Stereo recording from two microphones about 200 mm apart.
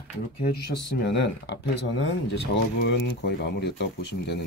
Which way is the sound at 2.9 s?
55° left (ahead or behind).